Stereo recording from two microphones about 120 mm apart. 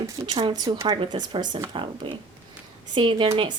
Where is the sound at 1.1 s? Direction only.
35° right (ahead or behind).